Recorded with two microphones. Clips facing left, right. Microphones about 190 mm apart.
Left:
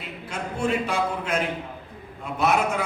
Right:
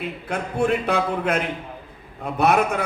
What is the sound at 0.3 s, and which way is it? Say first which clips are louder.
A man's voice: right 4 dB; 60° right (ahead or behind).